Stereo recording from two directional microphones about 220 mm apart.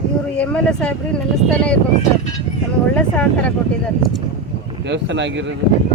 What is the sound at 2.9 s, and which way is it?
Speech, 5° left (ahead or behind).